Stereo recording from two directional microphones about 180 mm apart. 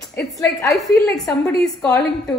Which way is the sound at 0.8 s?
20° left (ahead or behind).